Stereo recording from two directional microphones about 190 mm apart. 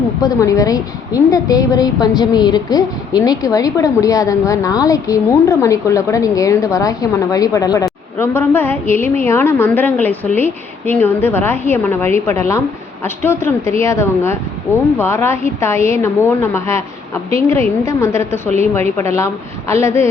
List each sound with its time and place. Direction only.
0.2 s a woman's voice: 20° left (ahead or behind)